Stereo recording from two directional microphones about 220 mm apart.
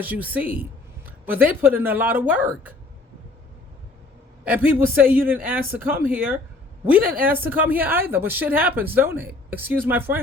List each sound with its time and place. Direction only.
0.0 s speech: 5° right (ahead or behind)
4.4 s speech: 5° right (ahead or behind)